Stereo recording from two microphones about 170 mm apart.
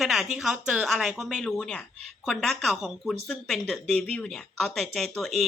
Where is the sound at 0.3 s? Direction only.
5° right (ahead or behind).